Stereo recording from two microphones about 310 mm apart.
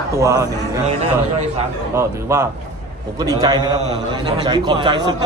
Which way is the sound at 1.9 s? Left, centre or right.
Centre.